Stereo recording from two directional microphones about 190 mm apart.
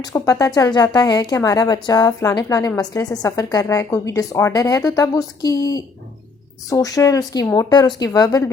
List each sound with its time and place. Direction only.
0.0 s a woman's voice: 20° left (ahead or behind)